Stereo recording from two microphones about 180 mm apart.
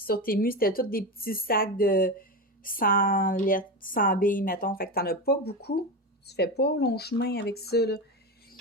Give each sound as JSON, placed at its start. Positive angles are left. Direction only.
{"t": 0.3, "sound": "a woman's voice", "side_deg": 55}